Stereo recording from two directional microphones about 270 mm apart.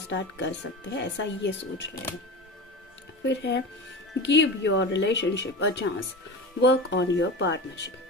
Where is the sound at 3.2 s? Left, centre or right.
Left.